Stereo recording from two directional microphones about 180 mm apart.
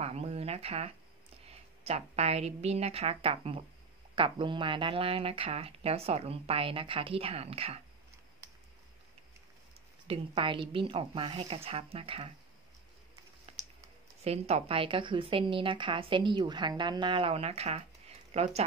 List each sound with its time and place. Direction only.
0.0 s a sound: 35° right (ahead or behind)
1.5 s speech: 35° right (ahead or behind)
10.0 s speech: 30° right (ahead or behind)
14.2 s a woman's voice: 35° right (ahead or behind)